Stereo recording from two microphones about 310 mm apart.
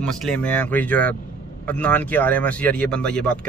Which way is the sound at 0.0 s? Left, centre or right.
Centre.